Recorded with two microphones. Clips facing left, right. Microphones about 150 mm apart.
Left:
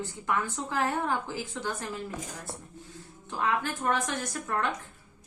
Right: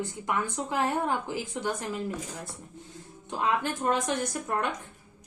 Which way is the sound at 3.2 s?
20° right (ahead or behind).